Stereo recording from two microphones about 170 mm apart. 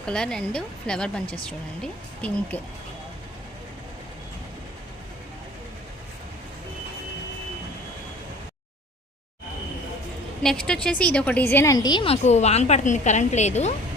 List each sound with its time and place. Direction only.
0.0 s speech: 5° left (ahead or behind)
10.4 s a woman's voice: 5° left (ahead or behind); by 13.7 s 40° left (ahead or behind)